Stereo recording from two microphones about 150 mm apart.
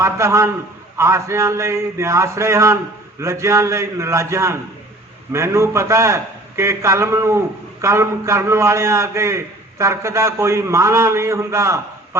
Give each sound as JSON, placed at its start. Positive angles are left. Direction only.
{"t": 0.0, "sound": "a man's voice", "side_deg": -20}